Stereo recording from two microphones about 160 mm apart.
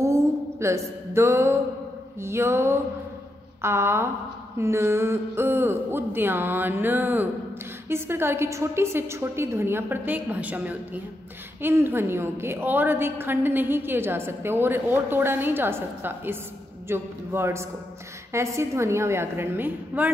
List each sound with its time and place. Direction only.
0.0 s music: 15° right (ahead or behind)
2.1 s a woman's voice: 15° right (ahead or behind)